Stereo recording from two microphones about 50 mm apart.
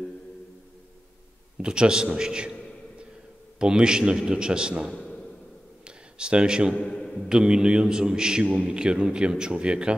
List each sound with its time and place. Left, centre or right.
1.6 s a man's voice: centre
3.5 s a man's voice: centre
4.9 s a sound: centre
5.9 s a sound: centre
6.7 s a man's voice: left
7.2 s a man's voice: centre